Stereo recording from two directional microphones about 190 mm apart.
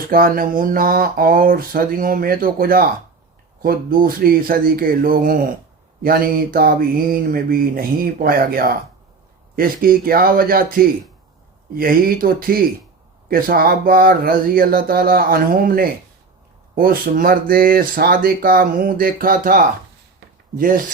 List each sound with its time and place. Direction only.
0.1 s speech: 50° right (ahead or behind)